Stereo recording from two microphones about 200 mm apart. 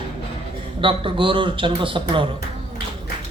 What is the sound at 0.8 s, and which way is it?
Speech, 25° right (ahead or behind).